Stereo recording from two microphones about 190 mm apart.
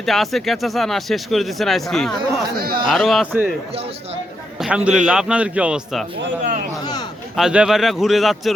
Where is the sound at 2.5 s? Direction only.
50° right (ahead or behind).